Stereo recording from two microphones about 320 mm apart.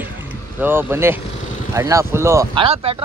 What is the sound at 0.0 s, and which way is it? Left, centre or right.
Boat, centre.